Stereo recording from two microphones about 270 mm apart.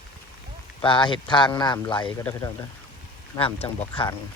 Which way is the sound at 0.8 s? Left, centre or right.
Centre.